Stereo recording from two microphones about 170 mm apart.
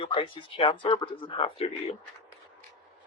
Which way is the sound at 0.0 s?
35° left (ahead or behind).